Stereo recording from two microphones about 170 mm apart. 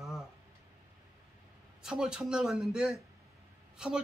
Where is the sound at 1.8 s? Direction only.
5° right (ahead or behind).